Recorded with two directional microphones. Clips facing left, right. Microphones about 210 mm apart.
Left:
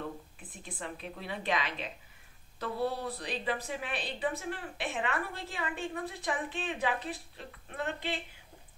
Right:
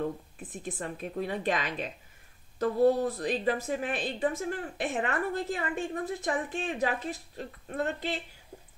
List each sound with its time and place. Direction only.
0.4 s a woman's voice: 45° right (ahead or behind)